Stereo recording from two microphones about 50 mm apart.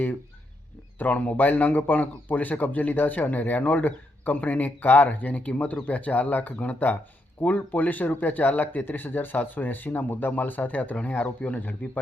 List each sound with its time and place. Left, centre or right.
0.9 s a man's voice: left